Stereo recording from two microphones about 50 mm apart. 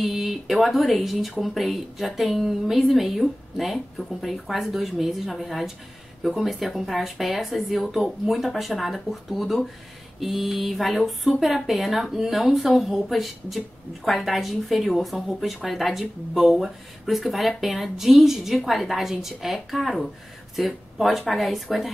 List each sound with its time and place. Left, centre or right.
0.0 s speech: centre